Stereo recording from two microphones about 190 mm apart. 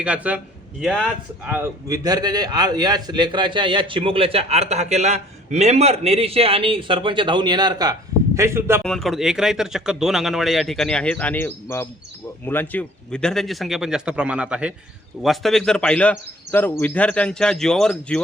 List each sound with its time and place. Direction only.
0.0 s speech: 5° right (ahead or behind)
8.8 s speech: centre (ahead or behind)